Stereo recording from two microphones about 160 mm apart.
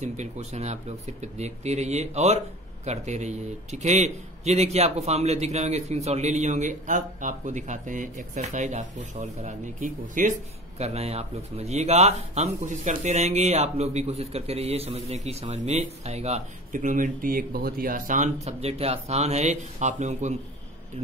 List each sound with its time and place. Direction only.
0.0 s speech: 45° right (ahead or behind)
10.8 s speech: 40° right (ahead or behind)